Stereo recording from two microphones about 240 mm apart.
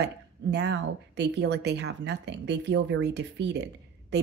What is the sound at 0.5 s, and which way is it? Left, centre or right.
Speech, right.